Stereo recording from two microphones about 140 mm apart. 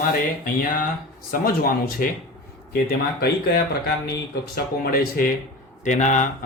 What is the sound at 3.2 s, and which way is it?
Speech, 90° left.